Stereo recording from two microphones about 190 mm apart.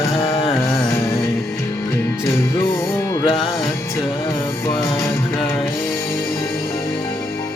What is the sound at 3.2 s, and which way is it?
Music, 25° left (ahead or behind).